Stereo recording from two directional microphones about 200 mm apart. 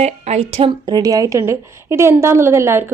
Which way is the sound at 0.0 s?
30° right (ahead or behind).